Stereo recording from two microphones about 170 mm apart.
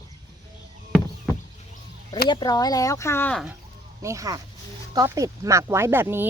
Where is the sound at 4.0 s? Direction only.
20° right (ahead or behind).